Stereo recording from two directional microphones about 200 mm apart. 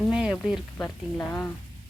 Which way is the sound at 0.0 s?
5° right (ahead or behind).